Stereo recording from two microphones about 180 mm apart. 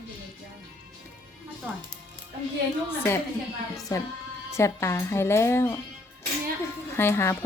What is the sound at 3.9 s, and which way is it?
Music, 20° left (ahead or behind).